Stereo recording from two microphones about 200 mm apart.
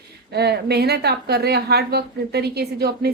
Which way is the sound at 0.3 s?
55° right (ahead or behind).